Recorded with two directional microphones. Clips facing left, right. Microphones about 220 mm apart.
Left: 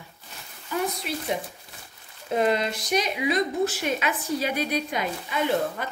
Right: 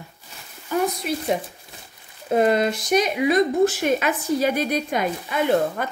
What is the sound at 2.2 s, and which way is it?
A woman's voice, 50° right (ahead or behind).